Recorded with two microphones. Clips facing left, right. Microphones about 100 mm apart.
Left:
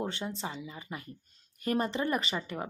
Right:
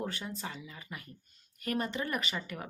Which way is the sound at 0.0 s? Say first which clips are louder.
Left 3 dB; 25° left (ahead or behind).